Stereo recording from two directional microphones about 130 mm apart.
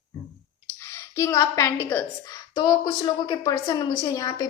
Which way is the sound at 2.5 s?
30° left (ahead or behind).